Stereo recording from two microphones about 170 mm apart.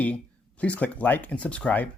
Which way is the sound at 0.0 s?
10° left (ahead or behind).